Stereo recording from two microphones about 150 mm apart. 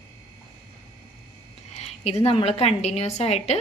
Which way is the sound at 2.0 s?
45° left (ahead or behind).